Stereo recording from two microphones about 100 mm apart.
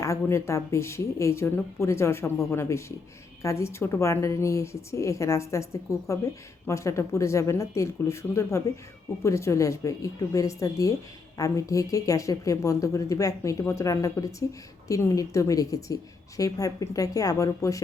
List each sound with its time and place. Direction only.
0.0 s a woman's voice: 30° left (ahead or behind)